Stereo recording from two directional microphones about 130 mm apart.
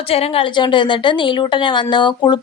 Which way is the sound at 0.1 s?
50° left (ahead or behind).